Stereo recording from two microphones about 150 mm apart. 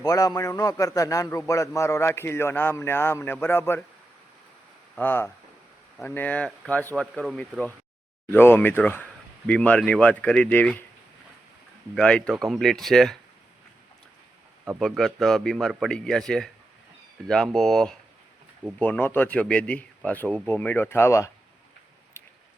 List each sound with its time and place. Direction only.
0.0 s a man's voice: 25° left (ahead or behind)
4.9 s speech: 15° left (ahead or behind)
11.9 s speech: 5° left (ahead or behind)
14.8 s speech: centre (ahead or behind); by 21.2 s 20° left (ahead or behind)
22.2 s squish: 15° left (ahead or behind)